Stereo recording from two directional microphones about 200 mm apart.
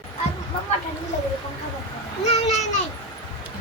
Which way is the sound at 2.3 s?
35° left (ahead or behind).